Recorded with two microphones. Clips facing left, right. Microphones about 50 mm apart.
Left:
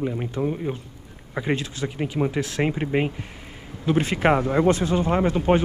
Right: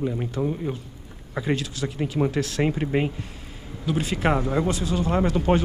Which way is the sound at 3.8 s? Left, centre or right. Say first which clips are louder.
Left 4 dB; left.